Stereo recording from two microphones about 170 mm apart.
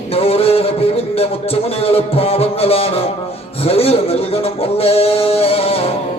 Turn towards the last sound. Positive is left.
turn(degrees=35)  # may be behind; listen again after turning